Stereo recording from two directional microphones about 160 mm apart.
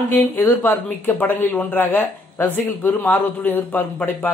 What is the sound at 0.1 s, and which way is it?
Speech, 10° left (ahead or behind).